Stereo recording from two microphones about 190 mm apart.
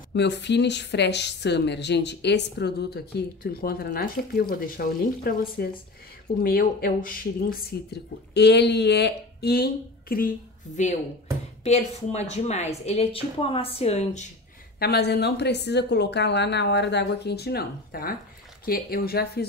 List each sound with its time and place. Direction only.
0.1 s a woman's voice: 65° left (ahead or behind); by 10.3 s 50° left (ahead or behind)
11.6 s speech: 35° left (ahead or behind)
14.8 s a woman's voice: 55° left (ahead or behind)